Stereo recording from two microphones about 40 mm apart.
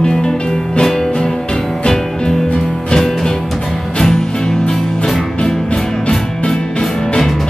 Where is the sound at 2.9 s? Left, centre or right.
Centre.